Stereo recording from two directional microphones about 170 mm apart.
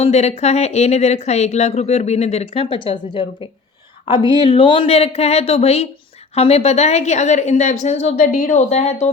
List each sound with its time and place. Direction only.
0.0 s speech: 40° left (ahead or behind)